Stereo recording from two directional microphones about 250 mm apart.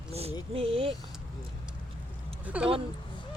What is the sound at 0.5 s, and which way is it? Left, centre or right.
Speech, right.